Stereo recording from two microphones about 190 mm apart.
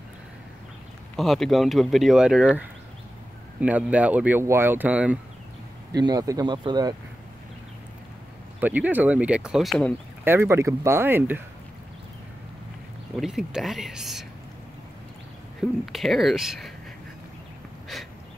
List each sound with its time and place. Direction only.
1.1 s speech: centre (ahead or behind)
3.6 s speech: 5° right (ahead or behind)
5.9 s speech: 20° right (ahead or behind)
8.5 s speech: 10° right (ahead or behind)
10.2 s speech: 10° right (ahead or behind)
13.1 s speech: centre (ahead or behind)
15.8 s speech: centre (ahead or behind)